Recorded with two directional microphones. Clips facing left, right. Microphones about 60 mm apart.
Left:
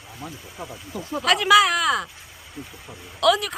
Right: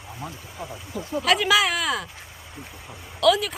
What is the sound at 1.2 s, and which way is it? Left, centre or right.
Speech, centre.